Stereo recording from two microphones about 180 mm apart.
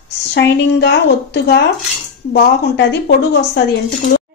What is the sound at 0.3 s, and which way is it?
A woman's voice, 70° left (ahead or behind).